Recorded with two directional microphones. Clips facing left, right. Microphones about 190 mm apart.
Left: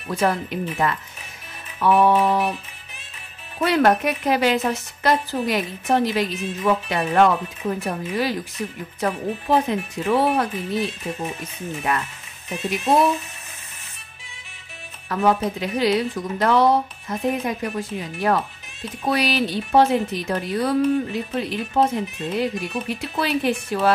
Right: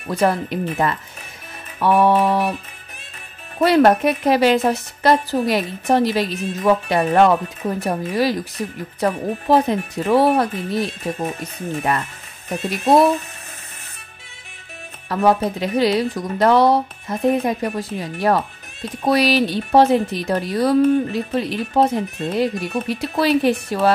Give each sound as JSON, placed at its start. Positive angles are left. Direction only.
{"t": 0.1, "sound": "a woman's voice", "side_deg": -35}
{"t": 3.5, "sound": "a woman's voice", "side_deg": -35}
{"t": 15.0, "sound": "a woman's voice", "side_deg": -35}